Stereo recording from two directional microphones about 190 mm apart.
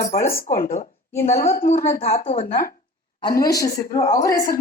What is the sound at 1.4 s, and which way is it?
Speech, 50° left (ahead or behind).